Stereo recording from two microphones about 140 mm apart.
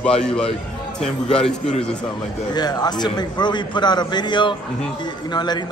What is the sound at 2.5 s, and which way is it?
A man's voice, 30° left (ahead or behind).